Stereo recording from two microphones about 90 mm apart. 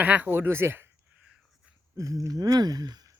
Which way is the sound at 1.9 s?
40° right (ahead or behind).